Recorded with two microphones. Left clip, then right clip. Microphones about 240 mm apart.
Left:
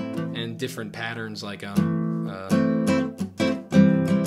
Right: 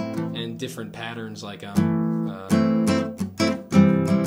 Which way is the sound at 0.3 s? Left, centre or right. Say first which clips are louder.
Left 1 dB; left.